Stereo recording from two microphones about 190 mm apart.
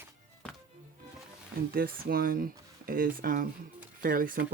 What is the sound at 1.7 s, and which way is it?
Speech, 50° right (ahead or behind).